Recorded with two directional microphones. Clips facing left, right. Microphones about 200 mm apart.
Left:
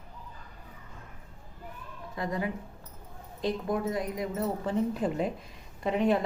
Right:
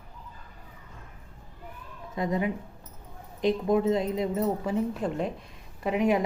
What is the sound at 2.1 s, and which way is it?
Speech, 20° right (ahead or behind).